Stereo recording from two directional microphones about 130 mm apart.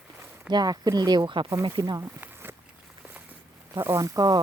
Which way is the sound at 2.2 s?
15° right (ahead or behind).